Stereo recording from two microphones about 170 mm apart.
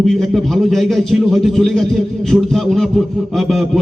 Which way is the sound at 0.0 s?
Centre (ahead or behind).